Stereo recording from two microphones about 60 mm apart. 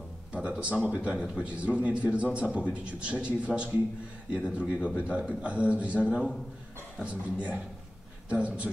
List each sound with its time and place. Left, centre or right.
0.3 s a sound: centre
0.9 s a man's voice: centre
7.1 s a man's voice: right